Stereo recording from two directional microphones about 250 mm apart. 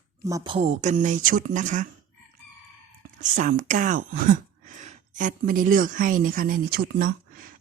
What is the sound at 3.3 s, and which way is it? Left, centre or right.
Speech, right.